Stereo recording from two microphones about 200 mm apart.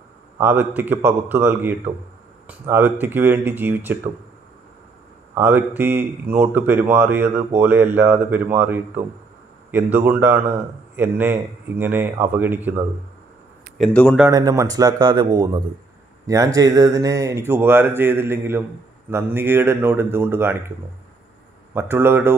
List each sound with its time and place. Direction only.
0.4 s speech: 10° right (ahead or behind)
5.3 s speech: 10° right (ahead or behind)
13.7 s speech: 5° left (ahead or behind)
14.3 s speech: 15° right (ahead or behind)
21.7 s speech: 10° right (ahead or behind)